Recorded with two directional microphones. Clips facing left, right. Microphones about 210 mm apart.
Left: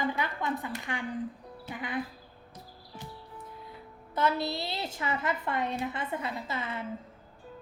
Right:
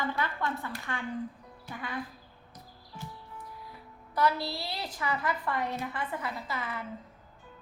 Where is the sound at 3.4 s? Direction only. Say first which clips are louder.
Left 2 dB; 25° left (ahead or behind).